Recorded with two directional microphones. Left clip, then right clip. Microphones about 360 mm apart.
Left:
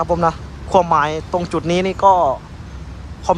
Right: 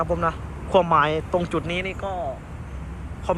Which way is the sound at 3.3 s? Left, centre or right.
Centre.